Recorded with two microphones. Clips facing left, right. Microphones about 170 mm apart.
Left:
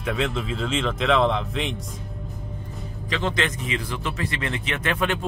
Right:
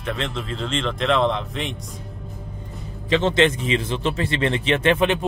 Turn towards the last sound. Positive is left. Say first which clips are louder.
# right 7 dB
turn(degrees=-20)  # may be behind; listen again after turning